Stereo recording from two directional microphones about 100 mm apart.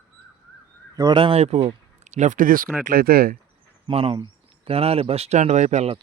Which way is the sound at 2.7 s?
Centre (ahead or behind).